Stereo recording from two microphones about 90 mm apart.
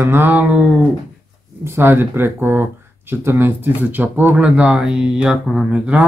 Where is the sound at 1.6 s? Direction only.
25° right (ahead or behind).